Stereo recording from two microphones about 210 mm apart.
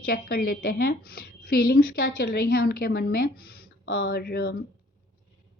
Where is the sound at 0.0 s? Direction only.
45° left (ahead or behind).